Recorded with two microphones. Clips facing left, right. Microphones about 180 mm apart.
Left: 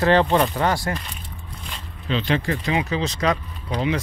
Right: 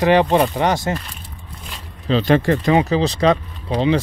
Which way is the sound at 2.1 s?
40° right (ahead or behind).